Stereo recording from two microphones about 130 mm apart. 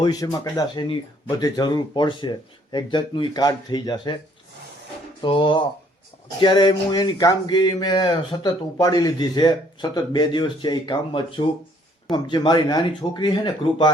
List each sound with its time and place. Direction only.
0.0 s speech: 30° left (ahead or behind)
5.2 s speech: 40° left (ahead or behind)